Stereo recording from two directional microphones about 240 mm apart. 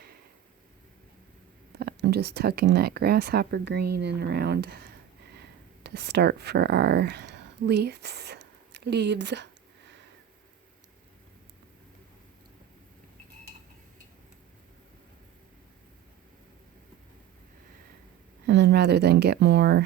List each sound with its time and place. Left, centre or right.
1.7 s speech: right
18.4 s speech: right